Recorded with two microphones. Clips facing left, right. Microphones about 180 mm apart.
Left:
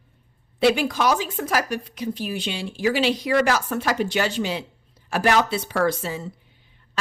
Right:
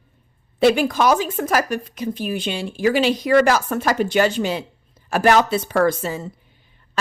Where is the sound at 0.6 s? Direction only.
50° right (ahead or behind).